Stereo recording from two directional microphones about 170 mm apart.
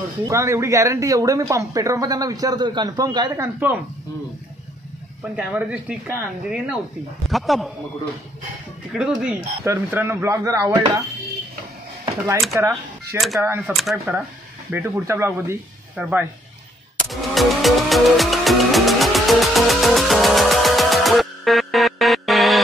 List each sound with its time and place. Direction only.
0.2 s speech: 15° right (ahead or behind)
3.5 s speech: 10° right (ahead or behind)
5.3 s speech: 5° right (ahead or behind)
8.9 s speech: 5° right (ahead or behind); by 11.0 s 25° right (ahead or behind)
12.5 s speech: 15° right (ahead or behind); by 14.2 s centre (ahead or behind)
14.7 s speech: 15° right (ahead or behind)
17.1 s music: centre (ahead or behind)